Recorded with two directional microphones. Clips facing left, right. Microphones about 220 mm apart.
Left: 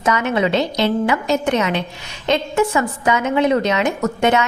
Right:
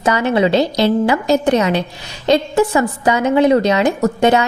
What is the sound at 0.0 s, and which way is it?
A woman's voice, 35° right (ahead or behind).